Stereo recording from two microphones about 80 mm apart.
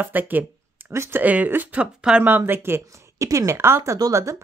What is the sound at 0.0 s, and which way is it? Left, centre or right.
Speech, right.